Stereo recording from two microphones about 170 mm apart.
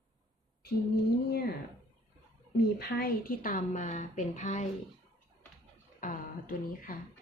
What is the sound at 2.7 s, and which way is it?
Speech, 60° left (ahead or behind).